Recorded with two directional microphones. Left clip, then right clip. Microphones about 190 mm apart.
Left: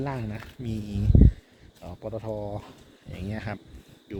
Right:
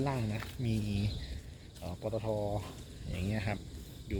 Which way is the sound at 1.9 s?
25° left (ahead or behind).